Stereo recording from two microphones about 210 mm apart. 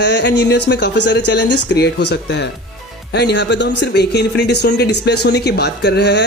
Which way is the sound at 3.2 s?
55° left (ahead or behind).